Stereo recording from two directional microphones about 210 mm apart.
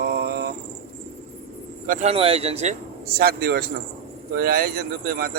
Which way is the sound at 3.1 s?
45° right (ahead or behind).